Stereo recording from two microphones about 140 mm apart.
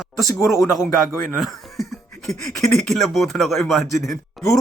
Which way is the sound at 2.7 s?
Centre (ahead or behind).